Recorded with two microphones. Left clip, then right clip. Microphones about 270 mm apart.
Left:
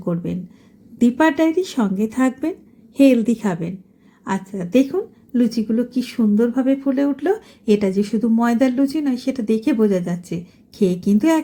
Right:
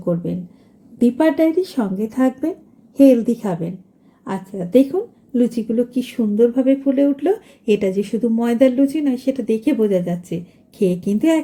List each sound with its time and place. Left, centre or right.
0.0 s a woman's voice: centre
10.8 s a woman's voice: left